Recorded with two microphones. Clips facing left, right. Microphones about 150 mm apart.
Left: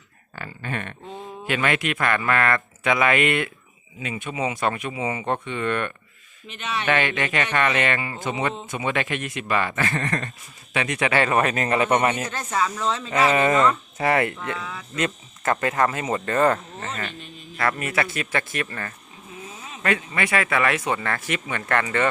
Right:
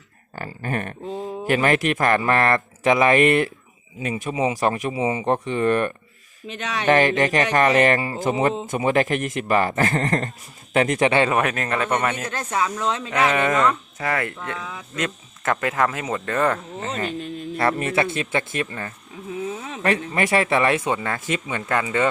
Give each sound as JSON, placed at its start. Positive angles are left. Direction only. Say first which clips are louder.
{"t": 0.3, "sound": "speech", "louder": "right 4 dB", "side_deg": -40}
{"t": 11.3, "sound": "speech", "louder": "even", "side_deg": -5}
{"t": 11.7, "sound": "speech", "louder": "left 5 dB", "side_deg": 15}
{"t": 12.5, "sound": "speech", "louder": "right 1 dB", "side_deg": -10}
{"t": 13.1, "sound": "speech", "louder": "left 2 dB", "side_deg": 5}
{"t": 14.0, "sound": "speech", "louder": "left 4 dB", "side_deg": 25}
{"t": 14.5, "sound": "speech", "louder": "even", "side_deg": -15}
{"t": 14.9, "sound": "speech", "louder": "left 2 dB", "side_deg": 0}
{"t": 16.8, "sound": "speech", "louder": "right 6 dB", "side_deg": -35}
{"t": 19.8, "sound": "speech", "louder": "right 3 dB", "side_deg": -35}